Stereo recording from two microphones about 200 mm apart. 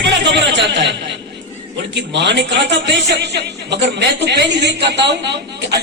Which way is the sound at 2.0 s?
60° right (ahead or behind).